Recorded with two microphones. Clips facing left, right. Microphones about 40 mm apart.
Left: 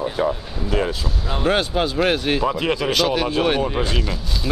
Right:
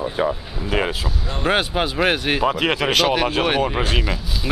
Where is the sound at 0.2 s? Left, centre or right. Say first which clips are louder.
Right 1 dB; centre.